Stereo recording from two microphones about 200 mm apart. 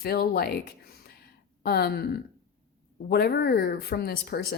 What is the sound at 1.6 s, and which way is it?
Speech, 50° left (ahead or behind).